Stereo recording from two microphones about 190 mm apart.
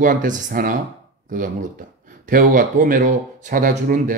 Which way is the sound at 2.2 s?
45° right (ahead or behind).